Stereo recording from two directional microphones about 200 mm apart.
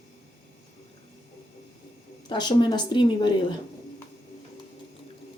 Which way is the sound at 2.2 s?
20° left (ahead or behind).